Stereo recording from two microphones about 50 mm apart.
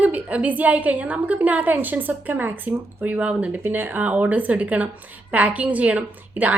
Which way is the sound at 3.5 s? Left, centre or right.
Right.